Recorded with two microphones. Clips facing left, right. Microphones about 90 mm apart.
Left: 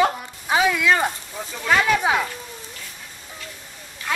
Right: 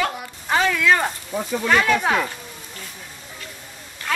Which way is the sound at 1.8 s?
5° left (ahead or behind).